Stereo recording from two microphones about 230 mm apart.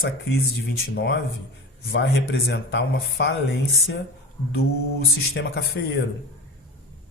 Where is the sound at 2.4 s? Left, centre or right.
Left.